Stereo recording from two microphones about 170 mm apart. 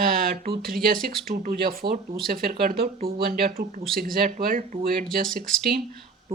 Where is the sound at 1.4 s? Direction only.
55° right (ahead or behind).